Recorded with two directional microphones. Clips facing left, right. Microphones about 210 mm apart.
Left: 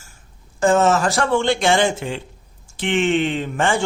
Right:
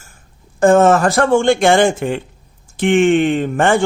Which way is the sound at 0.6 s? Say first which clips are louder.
Right 6 dB; 55° right (ahead or behind).